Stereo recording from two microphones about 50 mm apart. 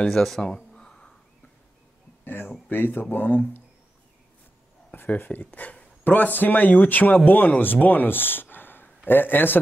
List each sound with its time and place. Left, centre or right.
0.0 s speech: centre
0.6 s a sound: centre
2.2 s speech: left
4.9 s speech: left